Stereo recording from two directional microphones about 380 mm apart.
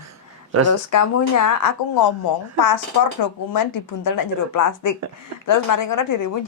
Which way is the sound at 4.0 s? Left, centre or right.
Left.